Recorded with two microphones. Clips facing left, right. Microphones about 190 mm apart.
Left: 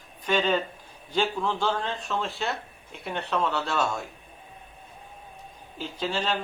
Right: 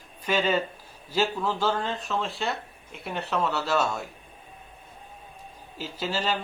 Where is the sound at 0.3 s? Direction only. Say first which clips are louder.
Even; 10° right (ahead or behind).